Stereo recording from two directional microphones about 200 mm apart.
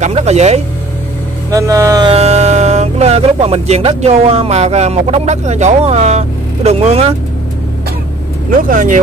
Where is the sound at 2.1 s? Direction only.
30° right (ahead or behind).